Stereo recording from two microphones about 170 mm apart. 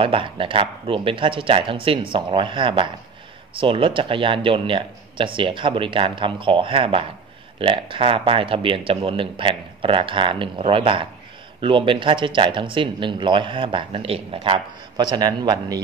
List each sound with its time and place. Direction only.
0.0 s speech: 30° right (ahead or behind)